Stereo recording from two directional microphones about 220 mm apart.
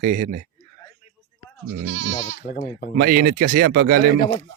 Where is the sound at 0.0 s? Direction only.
35° right (ahead or behind).